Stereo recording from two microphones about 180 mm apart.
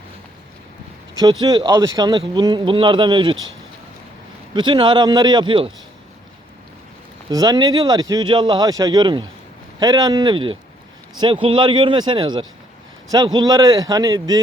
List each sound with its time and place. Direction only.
1.2 s speech: 25° right (ahead or behind)
4.5 s speech: 25° right (ahead or behind)
7.3 s speech: 20° right (ahead or behind)